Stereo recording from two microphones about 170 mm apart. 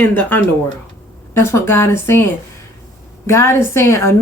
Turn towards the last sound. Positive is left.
turn(degrees=15)  # may be behind; listen again after turning